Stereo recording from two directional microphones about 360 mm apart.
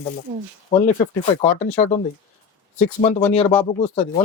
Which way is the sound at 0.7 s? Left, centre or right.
Centre.